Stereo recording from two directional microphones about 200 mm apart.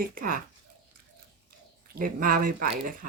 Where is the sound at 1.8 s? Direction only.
45° right (ahead or behind).